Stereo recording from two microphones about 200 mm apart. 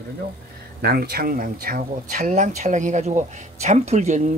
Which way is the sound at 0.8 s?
50° right (ahead or behind).